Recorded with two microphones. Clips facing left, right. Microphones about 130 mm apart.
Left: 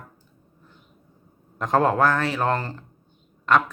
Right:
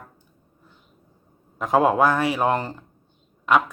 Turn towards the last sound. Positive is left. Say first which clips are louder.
# right 1 dB
turn(degrees=-5)  # may be behind; listen again after turning